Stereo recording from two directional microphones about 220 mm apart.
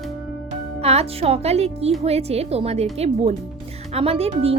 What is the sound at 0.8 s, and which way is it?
Speech, 30° right (ahead or behind).